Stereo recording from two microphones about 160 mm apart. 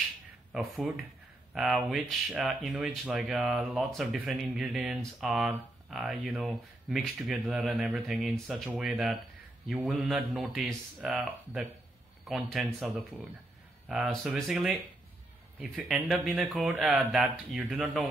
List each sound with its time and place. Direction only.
0.5 s speech: centre (ahead or behind)